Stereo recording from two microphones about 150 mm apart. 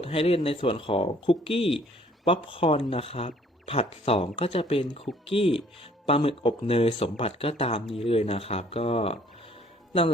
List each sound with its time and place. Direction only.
0.0 s speech: 40° left (ahead or behind)